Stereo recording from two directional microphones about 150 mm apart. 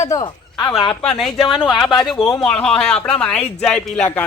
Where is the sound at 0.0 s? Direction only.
25° left (ahead or behind).